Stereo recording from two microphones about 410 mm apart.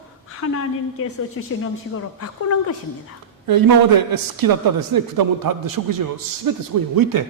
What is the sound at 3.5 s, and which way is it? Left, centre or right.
A man's voice, right.